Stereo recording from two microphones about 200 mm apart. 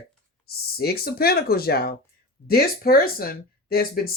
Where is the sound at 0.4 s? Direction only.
50° left (ahead or behind).